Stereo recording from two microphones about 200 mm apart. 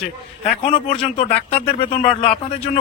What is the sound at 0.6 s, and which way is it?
Speech, 25° left (ahead or behind).